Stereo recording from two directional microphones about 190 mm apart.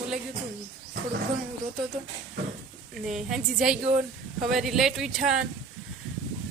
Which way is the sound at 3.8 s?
30° right (ahead or behind).